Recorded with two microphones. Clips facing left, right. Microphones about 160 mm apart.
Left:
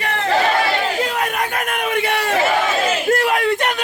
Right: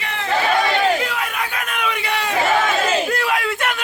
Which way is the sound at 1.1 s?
45° left (ahead or behind).